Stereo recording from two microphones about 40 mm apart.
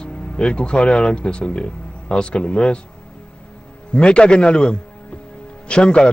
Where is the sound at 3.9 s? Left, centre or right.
Left.